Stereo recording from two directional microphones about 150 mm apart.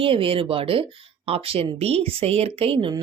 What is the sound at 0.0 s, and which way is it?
Speech, 35° right (ahead or behind).